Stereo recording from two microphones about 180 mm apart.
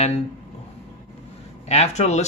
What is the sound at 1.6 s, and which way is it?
Speech, 35° left (ahead or behind).